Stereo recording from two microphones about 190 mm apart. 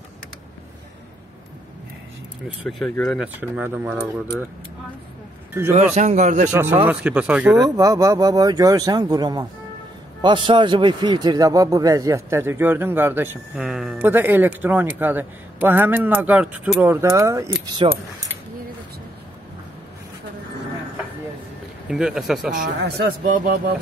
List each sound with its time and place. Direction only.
2.8 s speech: 10° left (ahead or behind)
3.2 s speech: 5° right (ahead or behind)
5.5 s a man's voice: 10° right (ahead or behind)
5.9 s speech: 40° right (ahead or behind)
6.5 s a man's voice: 10° right (ahead or behind)
7.5 s a man's voice: 20° right (ahead or behind)
21.8 s speech: 5° right (ahead or behind)
22.8 s speech: 55° right (ahead or behind)